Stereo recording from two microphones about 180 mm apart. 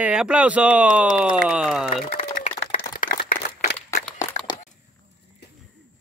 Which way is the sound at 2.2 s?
45° left (ahead or behind).